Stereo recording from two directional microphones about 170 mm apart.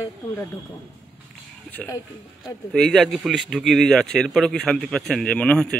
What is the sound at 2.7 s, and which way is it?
Speech, 5° left (ahead or behind).